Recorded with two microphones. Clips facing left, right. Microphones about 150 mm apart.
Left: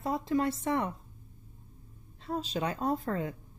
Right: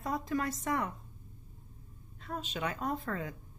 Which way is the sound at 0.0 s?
25° left (ahead or behind).